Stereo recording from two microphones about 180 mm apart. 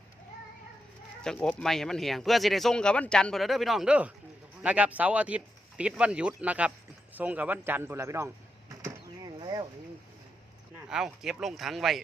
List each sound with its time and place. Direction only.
1.2 s speech: 5° left (ahead or behind); by 8.3 s 15° right (ahead or behind)
8.8 s a sound: 25° right (ahead or behind)
10.8 s speech: 5° right (ahead or behind)